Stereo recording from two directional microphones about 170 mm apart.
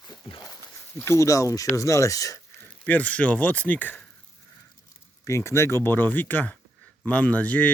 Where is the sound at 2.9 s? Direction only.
10° left (ahead or behind).